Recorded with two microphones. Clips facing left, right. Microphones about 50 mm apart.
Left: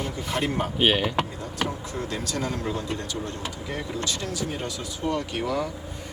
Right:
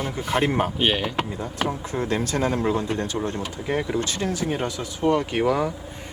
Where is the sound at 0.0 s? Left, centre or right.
Right.